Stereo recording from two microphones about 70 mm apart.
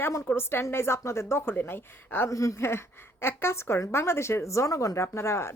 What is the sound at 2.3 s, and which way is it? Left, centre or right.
A woman's voice, left.